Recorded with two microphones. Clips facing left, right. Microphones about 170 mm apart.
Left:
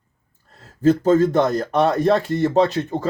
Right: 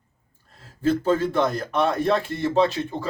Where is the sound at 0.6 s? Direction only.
40° left (ahead or behind).